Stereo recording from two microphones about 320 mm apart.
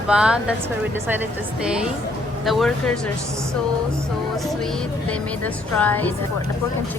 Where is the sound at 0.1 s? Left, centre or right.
Centre.